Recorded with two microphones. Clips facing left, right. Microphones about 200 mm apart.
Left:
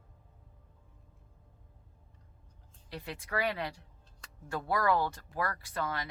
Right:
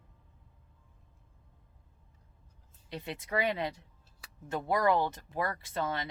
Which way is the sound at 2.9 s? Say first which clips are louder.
Right 3 dB; 20° right (ahead or behind).